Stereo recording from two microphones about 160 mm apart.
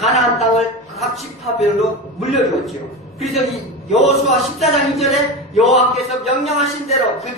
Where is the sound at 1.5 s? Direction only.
40° left (ahead or behind).